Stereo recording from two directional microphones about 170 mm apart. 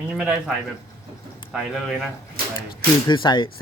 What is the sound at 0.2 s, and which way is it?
Speech, 5° right (ahead or behind).